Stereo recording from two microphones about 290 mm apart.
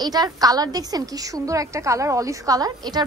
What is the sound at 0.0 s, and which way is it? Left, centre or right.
A woman's voice, centre.